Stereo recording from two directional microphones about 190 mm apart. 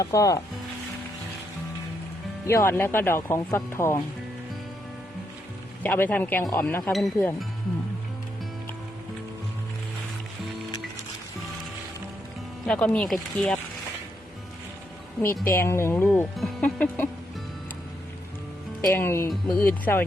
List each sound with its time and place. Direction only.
0.0 s speech: 15° left (ahead or behind)
2.5 s speech: 10° left (ahead or behind)
5.8 s speech: 10° left (ahead or behind)
12.6 s speech: 5° left (ahead or behind)
15.4 s speech: 15° left (ahead or behind)
18.9 s speech: 15° left (ahead or behind)